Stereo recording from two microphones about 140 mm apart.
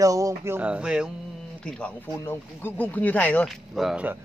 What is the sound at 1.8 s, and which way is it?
Speech, 15° left (ahead or behind).